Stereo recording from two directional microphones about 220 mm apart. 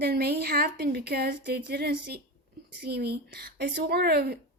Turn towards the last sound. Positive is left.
turn(degrees=-45)  # may be behind; listen again after turning